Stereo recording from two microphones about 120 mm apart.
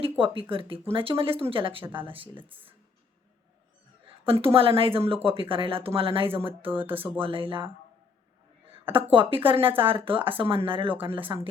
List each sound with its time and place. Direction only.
0.0 s speech: 50° right (ahead or behind)
4.2 s speech: 50° right (ahead or behind)
6.9 s speech: 15° right (ahead or behind)
7.2 s speech: 45° right (ahead or behind)
8.9 s speech: 45° right (ahead or behind)